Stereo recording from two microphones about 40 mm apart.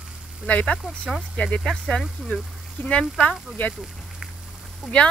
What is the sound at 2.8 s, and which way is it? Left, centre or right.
Speech, left.